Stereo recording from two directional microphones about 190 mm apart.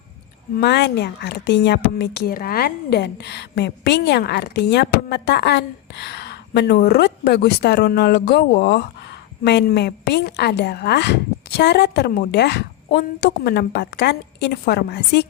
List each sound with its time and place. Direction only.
0.5 s speech: 60° left (ahead or behind)